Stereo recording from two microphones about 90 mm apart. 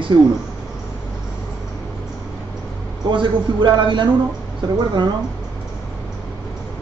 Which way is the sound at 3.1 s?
60° right (ahead or behind).